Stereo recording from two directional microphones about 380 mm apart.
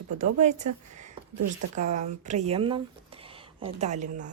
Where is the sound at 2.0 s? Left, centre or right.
Centre.